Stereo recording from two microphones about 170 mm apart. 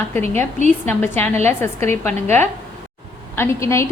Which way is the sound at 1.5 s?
15° left (ahead or behind).